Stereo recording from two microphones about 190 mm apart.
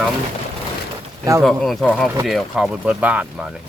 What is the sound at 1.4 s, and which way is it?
Speech, centre (ahead or behind).